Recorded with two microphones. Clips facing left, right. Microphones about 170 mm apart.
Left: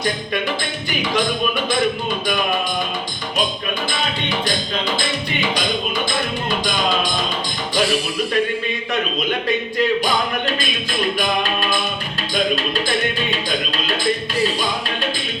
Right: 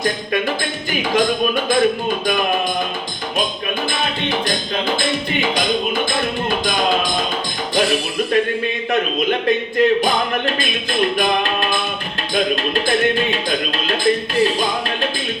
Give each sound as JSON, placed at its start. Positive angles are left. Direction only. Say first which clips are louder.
{"t": 1.1, "sound": "music", "louder": "right 4 dB", "side_deg": -45}
{"t": 4.3, "sound": "music", "louder": "right 2 dB", "side_deg": -50}
{"t": 9.7, "sound": "music", "louder": "right 3 dB", "side_deg": -50}
{"t": 12.3, "sound": "music", "louder": "right 2 dB", "side_deg": -50}